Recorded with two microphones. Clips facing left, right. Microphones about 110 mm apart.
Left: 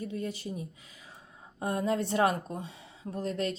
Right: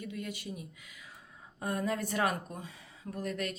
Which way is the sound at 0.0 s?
30° left (ahead or behind).